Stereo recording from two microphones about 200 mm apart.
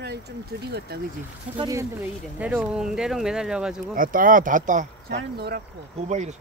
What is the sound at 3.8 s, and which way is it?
Speech, 45° right (ahead or behind).